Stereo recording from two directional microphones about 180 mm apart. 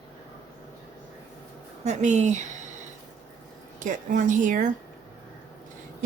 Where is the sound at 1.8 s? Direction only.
40° right (ahead or behind).